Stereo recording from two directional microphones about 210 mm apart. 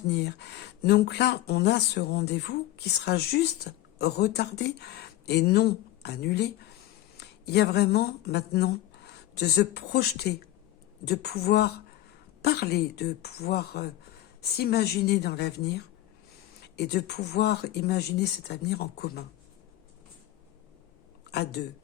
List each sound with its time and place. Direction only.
0.1 s speech: 55° left (ahead or behind)
21.2 s speech: 50° left (ahead or behind)